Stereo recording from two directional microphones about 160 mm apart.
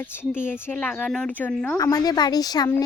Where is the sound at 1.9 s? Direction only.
25° left (ahead or behind).